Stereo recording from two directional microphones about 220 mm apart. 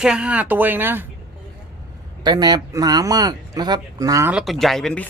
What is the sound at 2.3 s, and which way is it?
Speech, 20° right (ahead or behind).